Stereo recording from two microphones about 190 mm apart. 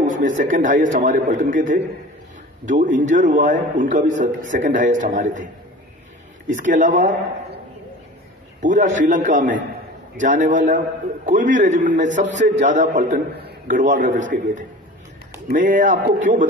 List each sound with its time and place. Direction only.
0.0 s a man's voice: 45° right (ahead or behind)
6.5 s a man's voice: 40° right (ahead or behind)
8.6 s a man's voice: 40° right (ahead or behind)